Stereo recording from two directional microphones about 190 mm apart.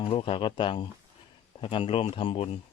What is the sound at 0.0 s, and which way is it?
Speech, 30° left (ahead or behind).